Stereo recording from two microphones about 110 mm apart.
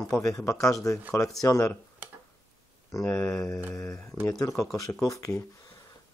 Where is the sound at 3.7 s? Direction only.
30° left (ahead or behind).